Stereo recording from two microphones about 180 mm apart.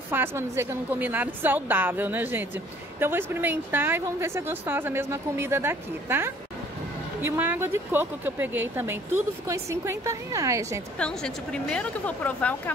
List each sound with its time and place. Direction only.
0.1 s a woman's voice: 10° right (ahead or behind)
11.0 s a woman's voice: 5° left (ahead or behind)